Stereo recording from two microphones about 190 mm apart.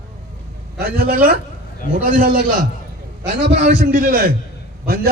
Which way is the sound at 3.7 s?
45° right (ahead or behind).